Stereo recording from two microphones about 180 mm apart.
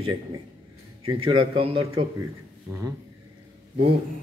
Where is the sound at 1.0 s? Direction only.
30° right (ahead or behind).